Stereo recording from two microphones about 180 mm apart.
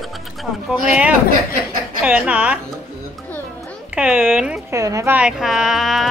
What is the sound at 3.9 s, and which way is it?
Speech, 5° right (ahead or behind).